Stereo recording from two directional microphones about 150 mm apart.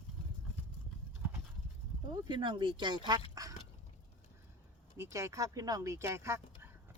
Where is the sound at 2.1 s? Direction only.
30° right (ahead or behind).